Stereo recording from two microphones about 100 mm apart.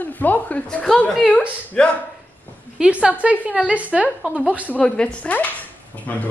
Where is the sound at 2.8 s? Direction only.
10° right (ahead or behind).